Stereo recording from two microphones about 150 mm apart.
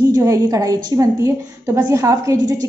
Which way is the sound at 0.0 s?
25° right (ahead or behind).